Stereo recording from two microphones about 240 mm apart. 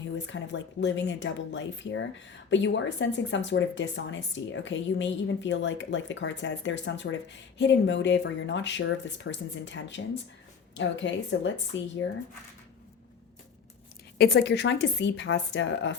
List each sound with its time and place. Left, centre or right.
0.3 s speech: left
14.2 s speech: left